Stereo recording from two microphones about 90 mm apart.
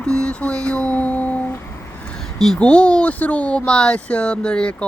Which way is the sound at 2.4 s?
5° left (ahead or behind).